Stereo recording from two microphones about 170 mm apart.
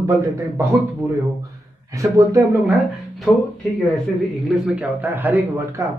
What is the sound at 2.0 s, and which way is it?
Speech, 20° right (ahead or behind).